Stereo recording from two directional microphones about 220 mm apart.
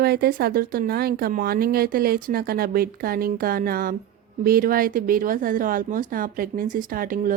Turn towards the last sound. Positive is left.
turn(degrees=-40)  # may be behind; listen again after turning